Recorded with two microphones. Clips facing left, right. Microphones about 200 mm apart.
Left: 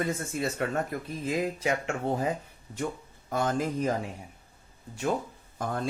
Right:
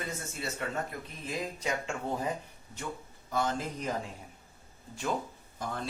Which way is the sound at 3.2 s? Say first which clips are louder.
Left 4 dB; 50° left (ahead or behind).